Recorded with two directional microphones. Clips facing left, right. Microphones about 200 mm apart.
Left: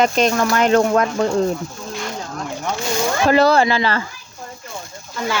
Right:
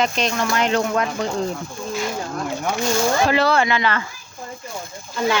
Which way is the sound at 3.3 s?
40° left (ahead or behind).